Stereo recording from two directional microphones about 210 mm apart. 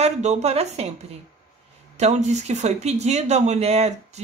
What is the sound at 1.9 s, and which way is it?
Speech, 30° right (ahead or behind).